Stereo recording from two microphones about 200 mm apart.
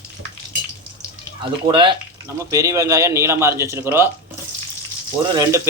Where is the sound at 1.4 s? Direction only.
25° right (ahead or behind).